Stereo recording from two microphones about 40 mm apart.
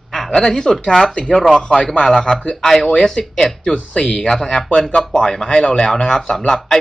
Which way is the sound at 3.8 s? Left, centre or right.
Left.